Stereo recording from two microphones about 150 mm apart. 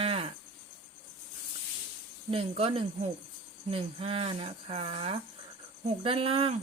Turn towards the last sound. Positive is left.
turn(degrees=-40)  # may be behind; listen again after turning